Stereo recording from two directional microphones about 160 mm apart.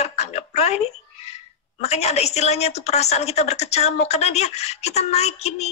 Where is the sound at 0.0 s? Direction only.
45° left (ahead or behind).